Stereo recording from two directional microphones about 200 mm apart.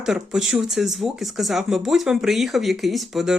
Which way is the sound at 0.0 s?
Centre (ahead or behind).